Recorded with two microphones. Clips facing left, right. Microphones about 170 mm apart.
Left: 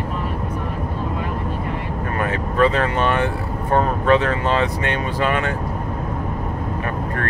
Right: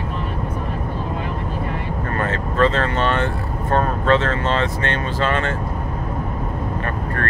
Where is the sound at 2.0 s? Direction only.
15° left (ahead or behind).